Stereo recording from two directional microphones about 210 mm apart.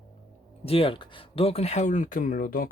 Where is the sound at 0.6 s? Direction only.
25° left (ahead or behind).